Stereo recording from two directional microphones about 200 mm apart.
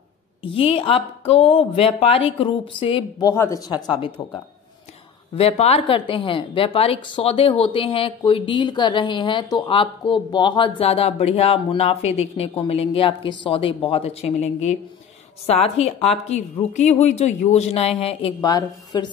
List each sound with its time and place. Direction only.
0.6 s a woman's voice: 30° left (ahead or behind)
5.3 s a woman's voice: 30° left (ahead or behind)